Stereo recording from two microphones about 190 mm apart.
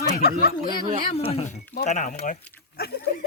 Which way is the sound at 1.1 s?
30° left (ahead or behind).